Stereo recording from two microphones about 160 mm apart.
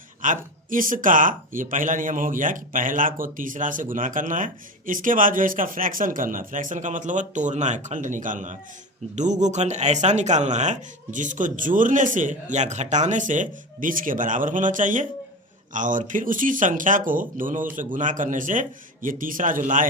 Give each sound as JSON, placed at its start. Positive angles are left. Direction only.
{"t": 0.2, "sound": "speech", "side_deg": -55}